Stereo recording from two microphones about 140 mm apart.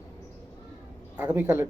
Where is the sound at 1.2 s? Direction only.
15° right (ahead or behind).